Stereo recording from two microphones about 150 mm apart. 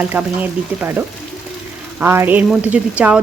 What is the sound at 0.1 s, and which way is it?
A woman's voice, 10° right (ahead or behind).